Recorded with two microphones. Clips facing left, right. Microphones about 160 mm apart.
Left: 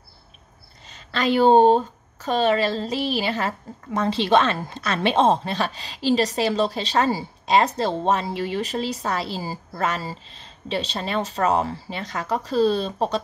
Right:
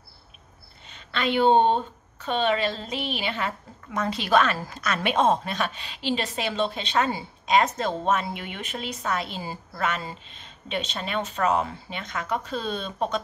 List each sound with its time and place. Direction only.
0.8 s a woman's voice: 40° left (ahead or behind)